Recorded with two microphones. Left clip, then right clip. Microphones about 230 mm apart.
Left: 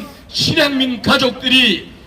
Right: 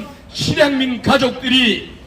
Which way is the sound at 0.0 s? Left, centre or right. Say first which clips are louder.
Left 5 dB; left.